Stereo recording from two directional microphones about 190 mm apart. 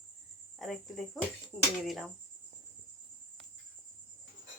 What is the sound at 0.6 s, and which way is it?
Speech, centre (ahead or behind).